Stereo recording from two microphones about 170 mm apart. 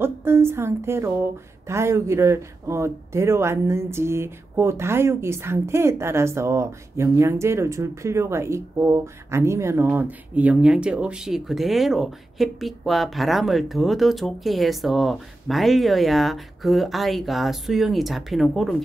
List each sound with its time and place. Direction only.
0.0 s a woman's voice: 15° right (ahead or behind)